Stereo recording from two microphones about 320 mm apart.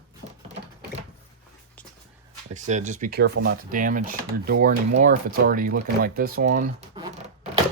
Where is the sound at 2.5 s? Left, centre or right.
Right.